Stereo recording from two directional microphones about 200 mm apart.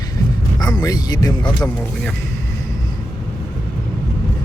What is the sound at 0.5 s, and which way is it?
Speech, 20° left (ahead or behind).